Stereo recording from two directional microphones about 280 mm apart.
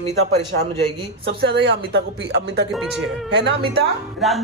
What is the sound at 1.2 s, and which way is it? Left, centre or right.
Speech, right.